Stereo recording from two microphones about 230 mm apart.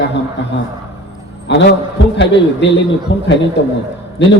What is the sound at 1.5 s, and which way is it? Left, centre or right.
Speech, left.